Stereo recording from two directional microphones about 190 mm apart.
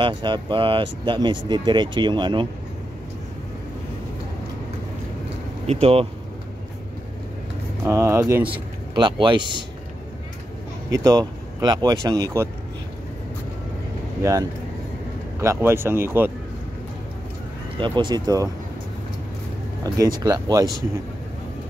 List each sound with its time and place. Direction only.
0.0 s speech: 25° right (ahead or behind)
5.7 s speech: 30° right (ahead or behind)
7.8 s speech: 15° right (ahead or behind)
8.5 s speech: 25° right (ahead or behind)
10.9 s speech: 20° right (ahead or behind)
15.4 s speech: 15° right (ahead or behind)
17.7 s speech: 25° right (ahead or behind)
19.8 s speech: 20° right (ahead or behind)